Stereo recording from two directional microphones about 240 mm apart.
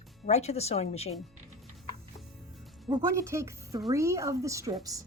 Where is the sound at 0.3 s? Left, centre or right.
Left.